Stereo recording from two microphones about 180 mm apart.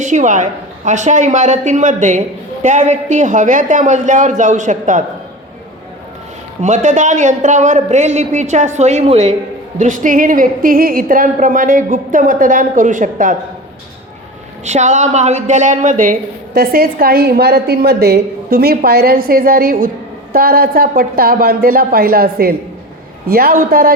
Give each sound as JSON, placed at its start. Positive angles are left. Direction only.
{"t": 0.0, "sound": "a woman's voice", "side_deg": -45}
{"t": 6.6, "sound": "a woman's voice", "side_deg": -40}
{"t": 14.6, "sound": "speech", "side_deg": -40}
{"t": 16.6, "sound": "a woman's voice", "side_deg": -60}